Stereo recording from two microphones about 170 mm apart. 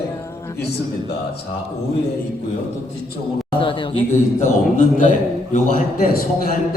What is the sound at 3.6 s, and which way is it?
Speech, 30° left (ahead or behind).